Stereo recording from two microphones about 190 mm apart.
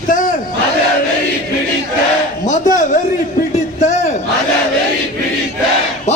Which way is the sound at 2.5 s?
40° left (ahead or behind).